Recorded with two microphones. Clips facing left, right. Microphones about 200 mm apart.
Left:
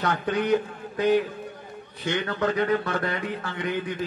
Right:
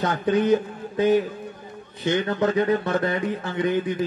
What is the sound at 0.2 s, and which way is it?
Speech, 20° right (ahead or behind).